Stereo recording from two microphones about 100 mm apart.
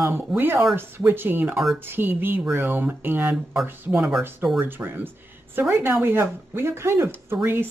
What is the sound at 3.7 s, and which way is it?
Speech, 15° right (ahead or behind).